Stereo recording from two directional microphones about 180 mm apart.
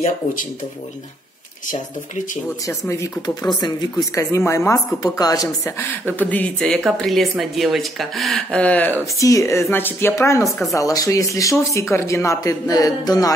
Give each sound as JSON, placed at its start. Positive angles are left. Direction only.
{"t": 0.0, "sound": "speech", "side_deg": 50}
{"t": 2.9, "sound": "speech", "side_deg": 20}